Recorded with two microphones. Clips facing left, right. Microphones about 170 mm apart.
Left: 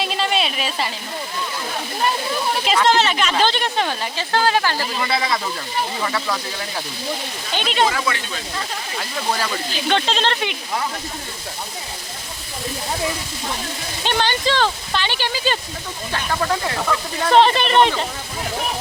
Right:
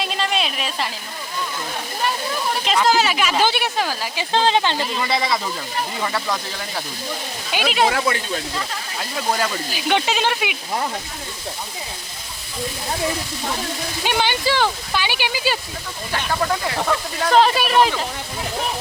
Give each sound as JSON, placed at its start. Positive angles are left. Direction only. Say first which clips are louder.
{"t": 0.0, "sound": "speech", "louder": "left 2 dB", "side_deg": 0}
{"t": 2.7, "sound": "speech", "louder": "even", "side_deg": -5}
{"t": 7.5, "sound": "speech", "louder": "right 1 dB", "side_deg": -5}
{"t": 8.0, "sound": "speech", "louder": "right 3 dB", "side_deg": -40}
{"t": 9.4, "sound": "speech", "louder": "right 1 dB", "side_deg": -10}
{"t": 14.0, "sound": "speech", "louder": "left 1 dB", "side_deg": -10}
{"t": 17.2, "sound": "speech", "louder": "left 1 dB", "side_deg": 0}